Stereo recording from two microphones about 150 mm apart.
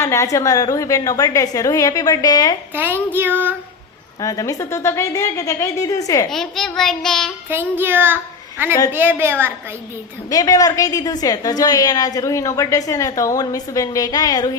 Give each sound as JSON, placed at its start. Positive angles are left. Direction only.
{"t": 0.0, "sound": "a woman's voice", "side_deg": 20}
{"t": 2.7, "sound": "child singing", "side_deg": -15}
{"t": 4.2, "sound": "a woman's voice", "side_deg": 25}
{"t": 6.3, "sound": "child singing", "side_deg": 5}
{"t": 7.5, "sound": "a child's voice", "side_deg": -15}
{"t": 8.9, "sound": "child singing", "side_deg": -15}
{"t": 10.2, "sound": "a woman's voice", "side_deg": 25}